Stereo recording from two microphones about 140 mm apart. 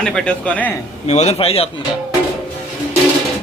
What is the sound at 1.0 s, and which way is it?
Speech, 55° left (ahead or behind).